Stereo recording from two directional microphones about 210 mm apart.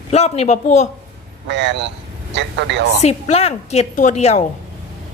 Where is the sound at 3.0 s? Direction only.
30° left (ahead or behind).